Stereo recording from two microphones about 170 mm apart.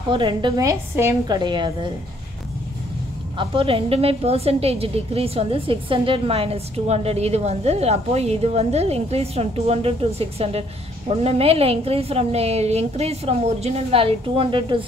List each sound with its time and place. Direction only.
0.1 s a woman's voice: 30° right (ahead or behind)
3.3 s a woman's voice: 30° right (ahead or behind)